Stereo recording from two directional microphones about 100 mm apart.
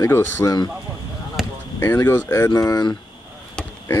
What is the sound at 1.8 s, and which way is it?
Speech, 25° left (ahead or behind).